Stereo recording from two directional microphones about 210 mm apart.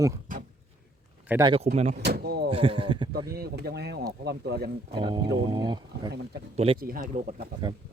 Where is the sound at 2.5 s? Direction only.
25° right (ahead or behind).